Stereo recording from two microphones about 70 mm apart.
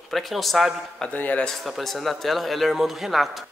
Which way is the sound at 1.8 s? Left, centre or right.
Centre.